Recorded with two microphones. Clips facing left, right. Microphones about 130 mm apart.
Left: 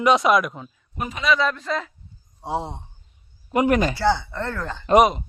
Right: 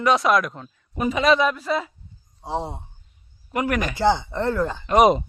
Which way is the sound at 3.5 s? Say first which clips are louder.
Left 5 dB; 20° left (ahead or behind).